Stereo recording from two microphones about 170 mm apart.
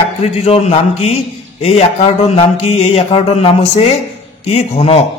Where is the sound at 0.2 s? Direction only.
35° left (ahead or behind).